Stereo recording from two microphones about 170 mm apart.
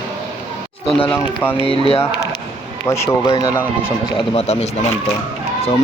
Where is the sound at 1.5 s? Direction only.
30° left (ahead or behind).